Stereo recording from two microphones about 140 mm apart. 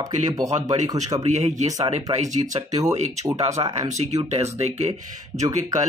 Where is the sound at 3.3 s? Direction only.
25° right (ahead or behind).